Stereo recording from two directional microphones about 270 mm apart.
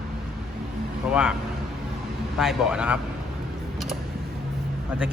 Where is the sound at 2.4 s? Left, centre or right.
Centre.